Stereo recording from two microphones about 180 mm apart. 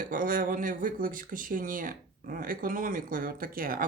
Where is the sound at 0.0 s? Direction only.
50° right (ahead or behind).